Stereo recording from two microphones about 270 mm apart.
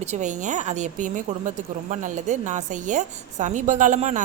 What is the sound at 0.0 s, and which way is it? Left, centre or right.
A woman's voice, right.